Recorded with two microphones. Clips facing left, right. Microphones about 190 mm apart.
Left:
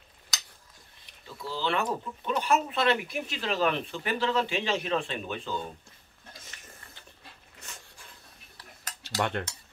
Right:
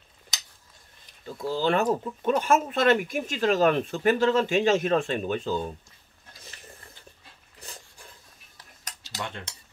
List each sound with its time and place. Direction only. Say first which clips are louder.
1.2 s speech: right 6 dB; 45° right (ahead or behind)
7.6 s dog: right 4 dB; 35° right (ahead or behind)
9.0 s a sound: left 6 dB; 60° left (ahead or behind)